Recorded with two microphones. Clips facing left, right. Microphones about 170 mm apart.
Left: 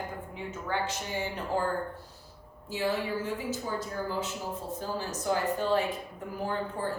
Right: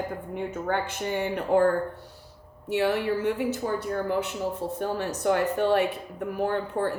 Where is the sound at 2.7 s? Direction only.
70° right (ahead or behind).